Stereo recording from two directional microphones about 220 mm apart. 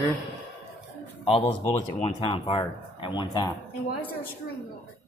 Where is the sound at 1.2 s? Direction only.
25° left (ahead or behind).